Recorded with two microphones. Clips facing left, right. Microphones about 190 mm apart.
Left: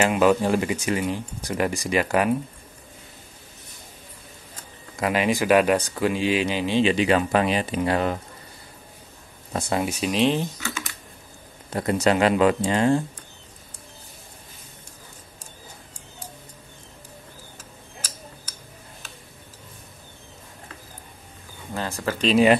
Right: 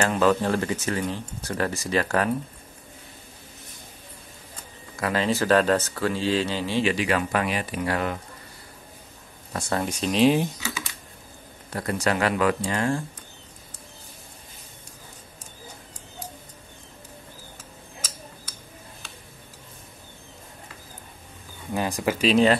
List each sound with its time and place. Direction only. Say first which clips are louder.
0.0 s speech: left 2 dB; 15° left (ahead or behind)
5.0 s speech: left 2 dB; 15° left (ahead or behind)
9.5 s speech: left 2 dB; 20° left (ahead or behind); by 10.3 s 5° left (ahead or behind)
10.3 s speech: right 2 dB; 10° right (ahead or behind)
11.7 s speech: left 4 dB; 20° left (ahead or behind)
21.7 s speech: right 3 dB; 15° right (ahead or behind)